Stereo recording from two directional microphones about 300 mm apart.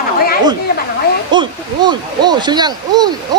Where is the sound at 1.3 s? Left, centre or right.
Centre.